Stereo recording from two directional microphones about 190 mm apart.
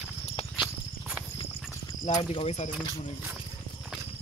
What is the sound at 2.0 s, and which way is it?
Speech, 35° left (ahead or behind).